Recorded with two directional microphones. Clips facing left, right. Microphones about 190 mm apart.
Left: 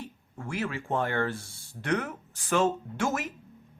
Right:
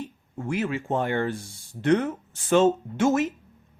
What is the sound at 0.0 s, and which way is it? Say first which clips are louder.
Speech: right 6 dB; 20° right (ahead or behind).